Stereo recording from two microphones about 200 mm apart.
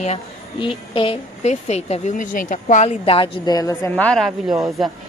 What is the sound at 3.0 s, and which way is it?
A woman's voice, 25° left (ahead or behind).